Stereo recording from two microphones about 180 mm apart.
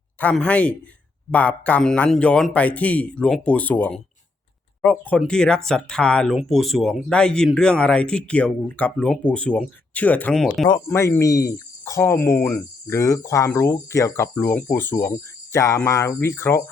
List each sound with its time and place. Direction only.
0.2 s speech: 5° left (ahead or behind)
10.8 s speech: 15° left (ahead or behind)